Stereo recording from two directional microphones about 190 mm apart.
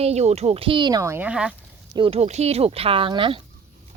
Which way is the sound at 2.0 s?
30° right (ahead or behind).